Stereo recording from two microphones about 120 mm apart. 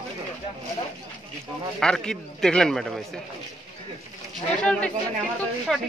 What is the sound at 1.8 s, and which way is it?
Speech, 5° left (ahead or behind).